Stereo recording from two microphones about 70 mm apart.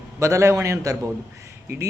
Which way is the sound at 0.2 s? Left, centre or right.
Right.